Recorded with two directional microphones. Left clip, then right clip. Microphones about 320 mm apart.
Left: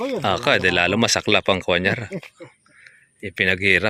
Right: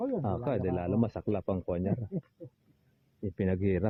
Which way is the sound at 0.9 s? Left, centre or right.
Left.